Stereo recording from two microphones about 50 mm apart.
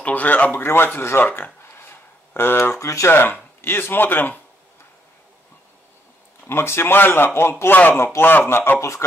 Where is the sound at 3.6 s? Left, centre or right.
Left.